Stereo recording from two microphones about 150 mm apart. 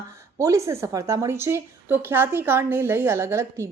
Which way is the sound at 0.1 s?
20° right (ahead or behind).